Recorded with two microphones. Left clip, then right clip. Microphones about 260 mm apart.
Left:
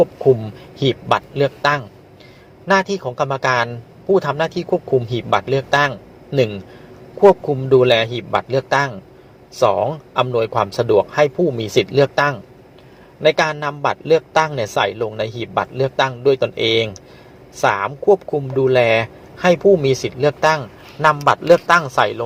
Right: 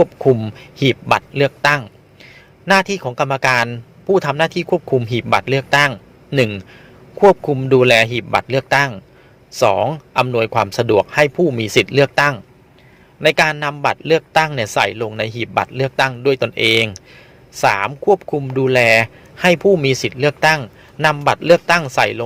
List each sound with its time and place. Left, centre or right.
0.0 s a man's voice: right